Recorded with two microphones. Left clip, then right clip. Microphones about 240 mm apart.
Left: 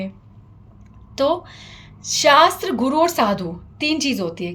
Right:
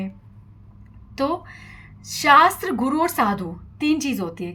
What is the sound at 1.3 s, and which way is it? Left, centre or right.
A woman's voice, right.